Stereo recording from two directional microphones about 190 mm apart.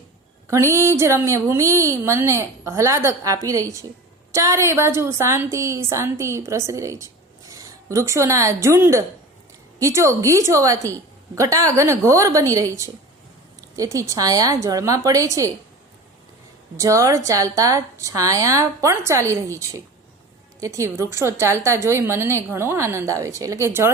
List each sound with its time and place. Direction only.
0.4 s a woman's voice: 15° right (ahead or behind)
16.7 s a woman's voice: 15° right (ahead or behind)